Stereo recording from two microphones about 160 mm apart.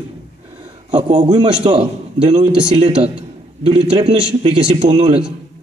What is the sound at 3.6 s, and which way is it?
Speech, 35° right (ahead or behind).